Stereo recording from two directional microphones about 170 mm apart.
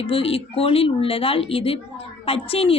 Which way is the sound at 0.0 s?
35° left (ahead or behind).